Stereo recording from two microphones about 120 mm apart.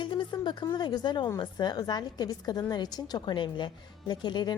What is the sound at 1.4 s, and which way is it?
A woman's voice, 35° left (ahead or behind).